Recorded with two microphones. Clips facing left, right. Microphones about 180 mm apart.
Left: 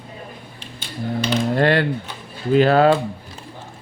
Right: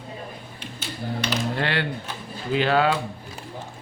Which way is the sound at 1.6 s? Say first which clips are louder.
Left 8 dB; 45° left (ahead or behind).